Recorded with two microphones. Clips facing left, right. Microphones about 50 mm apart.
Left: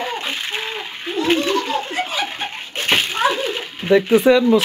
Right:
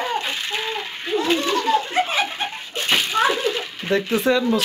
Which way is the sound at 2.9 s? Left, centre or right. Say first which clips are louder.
Left 3 dB; left.